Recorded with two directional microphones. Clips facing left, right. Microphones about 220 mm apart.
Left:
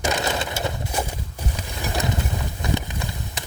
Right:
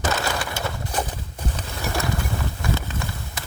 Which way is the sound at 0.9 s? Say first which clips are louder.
Even; 10° left (ahead or behind).